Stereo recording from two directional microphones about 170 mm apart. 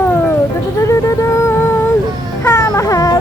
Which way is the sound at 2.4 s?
15° left (ahead or behind).